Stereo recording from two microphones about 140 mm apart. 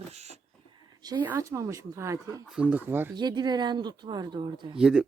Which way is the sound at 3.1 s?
30° right (ahead or behind).